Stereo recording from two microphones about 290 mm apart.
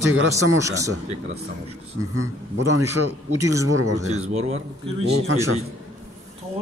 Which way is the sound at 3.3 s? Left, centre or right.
Centre.